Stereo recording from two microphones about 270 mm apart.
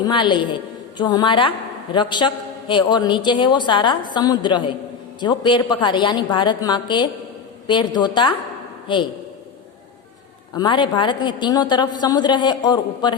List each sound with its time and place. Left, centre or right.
0.0 s a woman's voice: centre
10.5 s a woman's voice: centre